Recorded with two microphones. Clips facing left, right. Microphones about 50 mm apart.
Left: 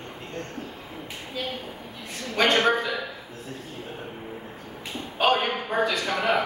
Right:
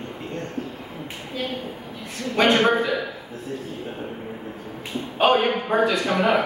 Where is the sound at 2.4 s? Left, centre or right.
Centre.